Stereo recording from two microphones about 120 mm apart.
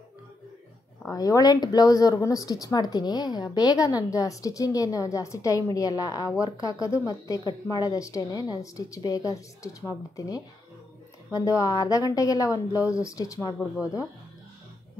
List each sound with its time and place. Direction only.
1.1 s speech: 30° left (ahead or behind)